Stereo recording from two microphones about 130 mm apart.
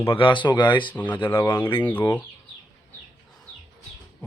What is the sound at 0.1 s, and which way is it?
Speech, 40° left (ahead or behind).